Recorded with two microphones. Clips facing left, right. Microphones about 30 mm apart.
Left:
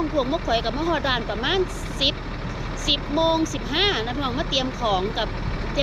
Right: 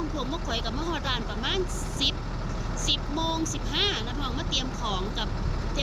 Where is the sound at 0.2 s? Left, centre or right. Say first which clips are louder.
Left 9 dB; left.